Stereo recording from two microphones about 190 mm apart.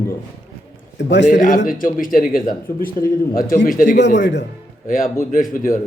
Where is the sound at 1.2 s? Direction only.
40° left (ahead or behind).